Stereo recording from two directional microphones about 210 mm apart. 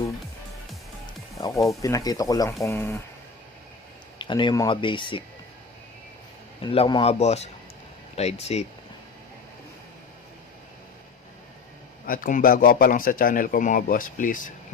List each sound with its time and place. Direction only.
1.4 s speech: 15° left (ahead or behind)
4.2 s speech: 20° left (ahead or behind)
6.6 s a man's voice: 25° left (ahead or behind)
12.0 s a man's voice: 40° left (ahead or behind)